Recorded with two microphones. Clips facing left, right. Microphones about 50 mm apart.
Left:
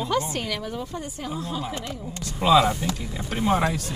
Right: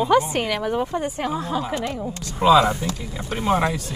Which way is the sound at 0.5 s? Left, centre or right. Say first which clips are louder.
Right 8 dB; right.